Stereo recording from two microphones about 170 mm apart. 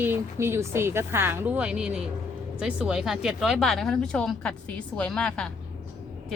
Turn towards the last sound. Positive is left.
turn(degrees=5)  # may be behind; listen again after turning